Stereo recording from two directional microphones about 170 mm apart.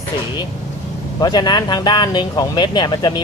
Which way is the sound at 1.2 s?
25° left (ahead or behind).